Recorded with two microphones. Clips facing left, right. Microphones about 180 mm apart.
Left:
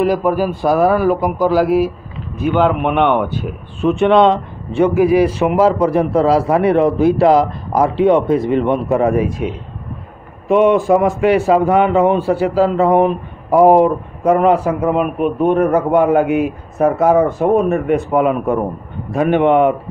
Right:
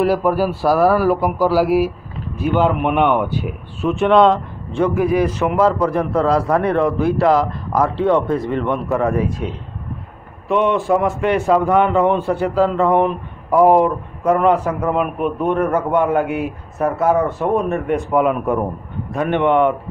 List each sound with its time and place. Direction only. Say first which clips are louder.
0.3 s speech: left 1 dB; 5° right (ahead or behind); by 19.4 s 10° left (ahead or behind)